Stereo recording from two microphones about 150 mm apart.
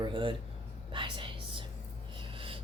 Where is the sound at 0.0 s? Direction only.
35° right (ahead or behind).